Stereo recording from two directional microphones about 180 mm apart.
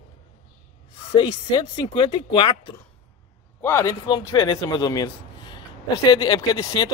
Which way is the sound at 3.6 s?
15° left (ahead or behind).